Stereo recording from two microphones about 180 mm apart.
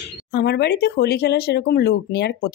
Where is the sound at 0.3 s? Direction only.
65° left (ahead or behind).